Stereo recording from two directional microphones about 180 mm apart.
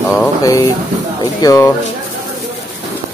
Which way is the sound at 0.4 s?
20° left (ahead or behind).